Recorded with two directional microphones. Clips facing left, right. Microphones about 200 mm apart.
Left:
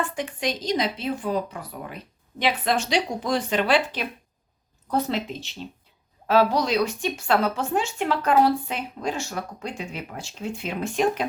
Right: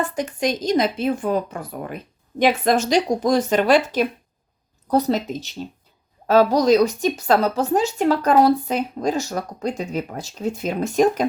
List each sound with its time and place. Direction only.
0.0 s a woman's voice: 40° right (ahead or behind)